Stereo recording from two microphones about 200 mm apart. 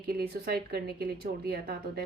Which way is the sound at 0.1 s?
50° right (ahead or behind).